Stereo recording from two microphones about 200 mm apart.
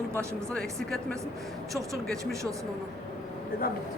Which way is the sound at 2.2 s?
15° right (ahead or behind).